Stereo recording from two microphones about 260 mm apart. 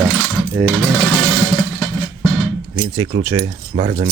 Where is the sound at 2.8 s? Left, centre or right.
Centre.